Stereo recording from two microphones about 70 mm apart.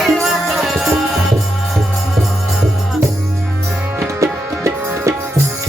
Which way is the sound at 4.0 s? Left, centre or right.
Right.